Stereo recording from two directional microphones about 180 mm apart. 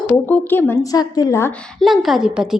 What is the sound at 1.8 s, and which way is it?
Speech, centre (ahead or behind).